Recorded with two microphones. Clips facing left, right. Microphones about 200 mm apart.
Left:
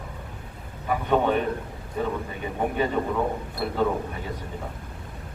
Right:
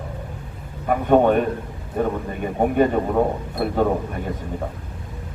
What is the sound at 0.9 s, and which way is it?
A man's voice, 50° right (ahead or behind).